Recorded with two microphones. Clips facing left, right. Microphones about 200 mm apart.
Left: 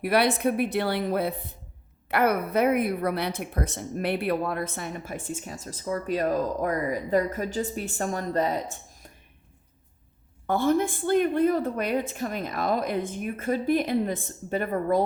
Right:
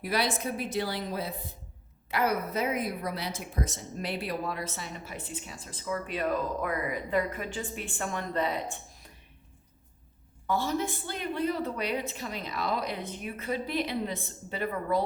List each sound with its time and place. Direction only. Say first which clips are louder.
0.0 s a woman's voice: left 7 dB; 60° left (ahead or behind); by 8.8 s 40° left (ahead or behind)
10.4 s a woman's voice: left 6 dB; 55° left (ahead or behind)